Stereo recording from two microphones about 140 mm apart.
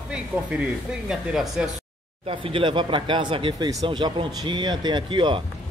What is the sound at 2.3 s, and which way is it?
Speech, 40° right (ahead or behind).